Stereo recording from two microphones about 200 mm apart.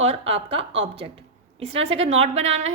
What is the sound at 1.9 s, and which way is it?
Speech, 30° right (ahead or behind).